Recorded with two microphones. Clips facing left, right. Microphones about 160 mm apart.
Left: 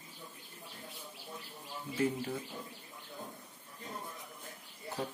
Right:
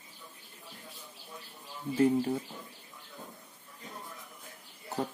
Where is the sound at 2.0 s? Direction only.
35° right (ahead or behind).